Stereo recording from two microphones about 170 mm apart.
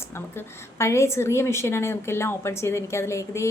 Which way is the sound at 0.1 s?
15° left (ahead or behind).